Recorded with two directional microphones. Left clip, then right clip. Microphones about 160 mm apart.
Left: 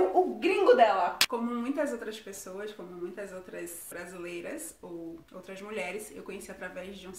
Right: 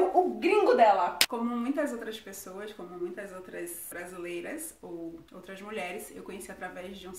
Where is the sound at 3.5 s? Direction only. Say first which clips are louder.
Right 1 dB; 15° left (ahead or behind).